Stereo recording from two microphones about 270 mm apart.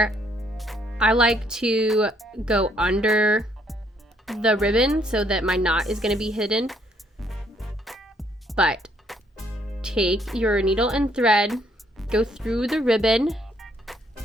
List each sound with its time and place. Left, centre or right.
0.0 s a woman's voice: centre
7.2 s music: centre
9.8 s speech: centre